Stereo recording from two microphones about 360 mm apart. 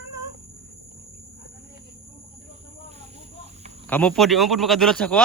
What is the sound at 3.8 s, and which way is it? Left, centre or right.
Speech, centre.